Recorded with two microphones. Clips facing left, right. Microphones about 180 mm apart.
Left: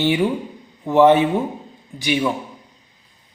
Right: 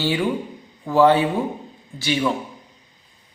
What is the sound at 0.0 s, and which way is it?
Speech, 20° left (ahead or behind).